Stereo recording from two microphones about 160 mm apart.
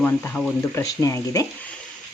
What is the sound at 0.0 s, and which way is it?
Chopping, 10° left (ahead or behind).